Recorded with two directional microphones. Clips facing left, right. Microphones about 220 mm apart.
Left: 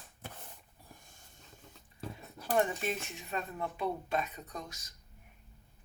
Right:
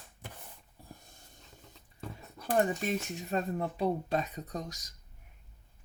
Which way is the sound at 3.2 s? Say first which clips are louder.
Right 5 dB; 40° right (ahead or behind).